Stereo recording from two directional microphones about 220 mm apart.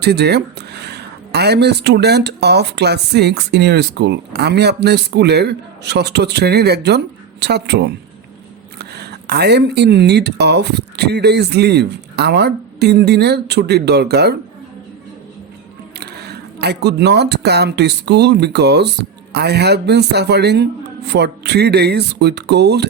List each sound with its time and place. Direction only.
0.0 s speech: 50° right (ahead or behind)
16.0 s speech: 50° right (ahead or behind)